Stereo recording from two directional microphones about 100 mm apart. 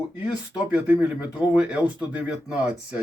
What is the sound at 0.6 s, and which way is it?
Speech, 15° right (ahead or behind).